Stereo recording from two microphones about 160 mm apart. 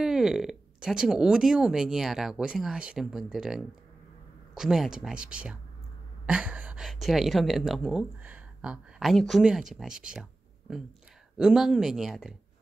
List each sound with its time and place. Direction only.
0.0 s speech: 5° right (ahead or behind)